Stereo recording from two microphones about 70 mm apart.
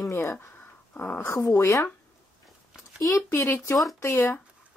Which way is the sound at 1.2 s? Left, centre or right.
Left.